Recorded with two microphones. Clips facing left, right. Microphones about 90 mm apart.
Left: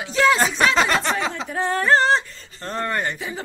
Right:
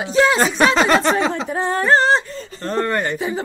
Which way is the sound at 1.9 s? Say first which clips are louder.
Right 3 dB; 5° right (ahead or behind).